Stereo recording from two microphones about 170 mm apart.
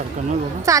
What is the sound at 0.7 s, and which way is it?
Speech, 20° right (ahead or behind).